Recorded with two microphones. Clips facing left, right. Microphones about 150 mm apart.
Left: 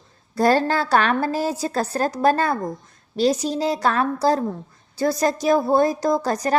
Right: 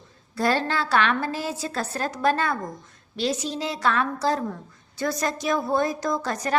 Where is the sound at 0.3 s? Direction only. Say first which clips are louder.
Left 6 dB; 40° left (ahead or behind).